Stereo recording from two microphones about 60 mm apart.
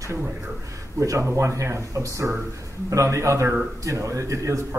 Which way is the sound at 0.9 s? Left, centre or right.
Right.